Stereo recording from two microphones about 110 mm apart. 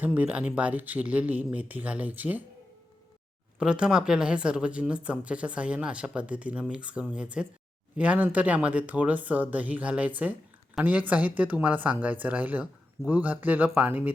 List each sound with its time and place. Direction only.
0.0 s speech: 15° right (ahead or behind)
3.6 s speech: 10° right (ahead or behind)